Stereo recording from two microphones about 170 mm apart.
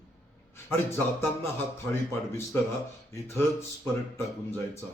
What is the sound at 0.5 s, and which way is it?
A man's voice, 15° left (ahead or behind).